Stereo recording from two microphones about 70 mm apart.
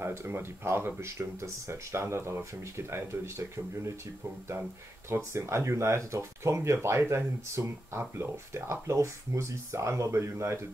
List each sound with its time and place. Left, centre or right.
0.0 s speech: right
5.1 s speech: right